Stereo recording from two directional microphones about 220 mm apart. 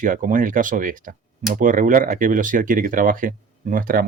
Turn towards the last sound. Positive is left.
turn(degrees=-40)  # may be behind; listen again after turning